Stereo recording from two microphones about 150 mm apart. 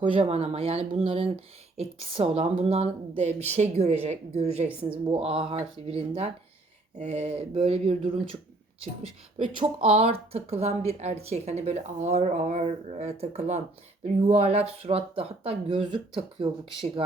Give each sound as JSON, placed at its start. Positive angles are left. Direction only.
{"t": 0.0, "sound": "speech", "side_deg": -35}
{"t": 9.6, "sound": "speech", "side_deg": -40}